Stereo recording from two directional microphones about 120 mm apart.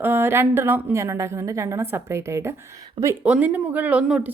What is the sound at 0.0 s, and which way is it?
Speech, 20° right (ahead or behind).